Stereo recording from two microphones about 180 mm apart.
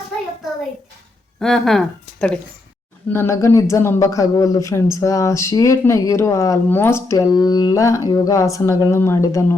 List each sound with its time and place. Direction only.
1.4 s speech: centre (ahead or behind)
3.1 s speech: 15° left (ahead or behind)